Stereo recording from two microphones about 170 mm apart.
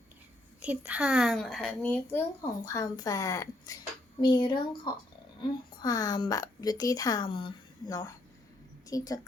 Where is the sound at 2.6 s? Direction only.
20° left (ahead or behind).